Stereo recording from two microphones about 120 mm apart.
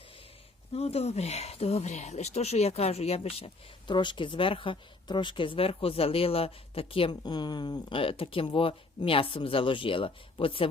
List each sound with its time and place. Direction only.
0.7 s speech: 60° left (ahead or behind)